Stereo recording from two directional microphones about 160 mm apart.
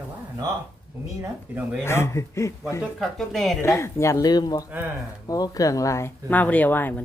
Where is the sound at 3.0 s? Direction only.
Centre (ahead or behind).